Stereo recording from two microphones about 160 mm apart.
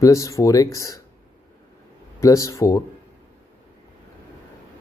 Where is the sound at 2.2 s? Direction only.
20° left (ahead or behind).